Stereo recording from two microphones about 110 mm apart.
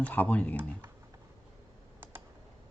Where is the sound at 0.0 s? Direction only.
15° left (ahead or behind).